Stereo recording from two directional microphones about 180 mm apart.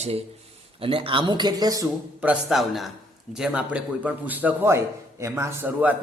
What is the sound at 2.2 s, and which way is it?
A man's voice, 5° right (ahead or behind).